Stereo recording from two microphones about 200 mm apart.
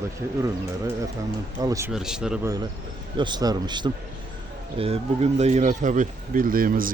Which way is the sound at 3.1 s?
25° right (ahead or behind).